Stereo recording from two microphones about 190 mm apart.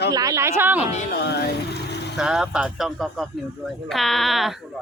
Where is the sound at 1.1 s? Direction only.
60° left (ahead or behind).